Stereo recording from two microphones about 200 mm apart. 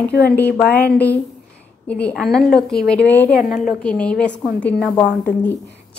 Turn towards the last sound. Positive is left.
turn(degrees=10)  # may be behind; listen again after turning